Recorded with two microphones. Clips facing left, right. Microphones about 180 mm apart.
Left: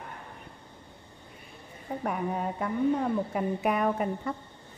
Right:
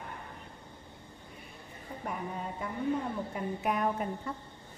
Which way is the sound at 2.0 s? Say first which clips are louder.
Left 7 dB; 65° left (ahead or behind).